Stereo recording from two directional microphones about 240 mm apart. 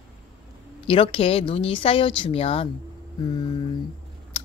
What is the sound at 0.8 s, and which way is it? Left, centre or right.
Speech, left.